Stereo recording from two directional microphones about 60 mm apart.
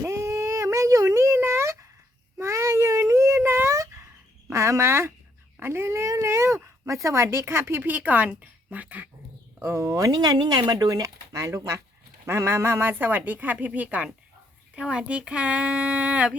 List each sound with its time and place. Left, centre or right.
0.0 s a sound: right
4.4 s speech: right
9.6 s speech: right
12.2 s speech: right